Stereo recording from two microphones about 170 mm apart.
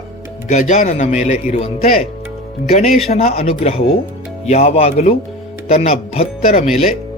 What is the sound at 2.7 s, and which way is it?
Speech, 40° left (ahead or behind).